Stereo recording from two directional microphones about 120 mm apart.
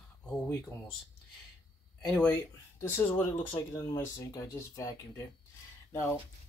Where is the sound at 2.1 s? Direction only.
15° left (ahead or behind).